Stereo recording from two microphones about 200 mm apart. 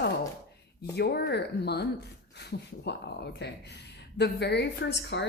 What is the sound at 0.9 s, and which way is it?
A woman's voice, 55° left (ahead or behind).